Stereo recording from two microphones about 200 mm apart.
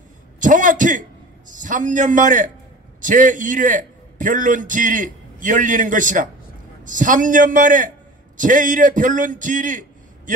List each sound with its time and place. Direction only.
0.4 s a man's voice: 40° right (ahead or behind)